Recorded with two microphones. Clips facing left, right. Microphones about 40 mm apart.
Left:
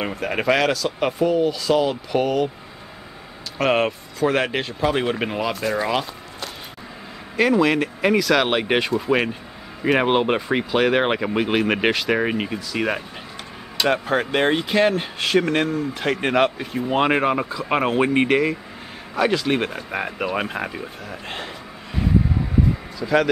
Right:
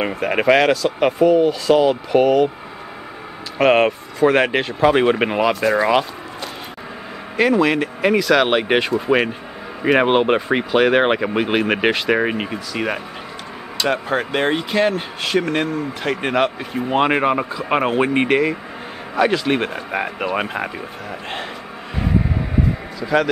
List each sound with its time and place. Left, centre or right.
0.0 s speech: centre
3.6 s speech: centre
5.5 s speech: centre
7.3 s speech: centre
22.9 s a man's voice: centre